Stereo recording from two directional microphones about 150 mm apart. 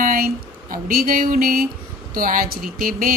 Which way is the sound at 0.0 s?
65° right (ahead or behind).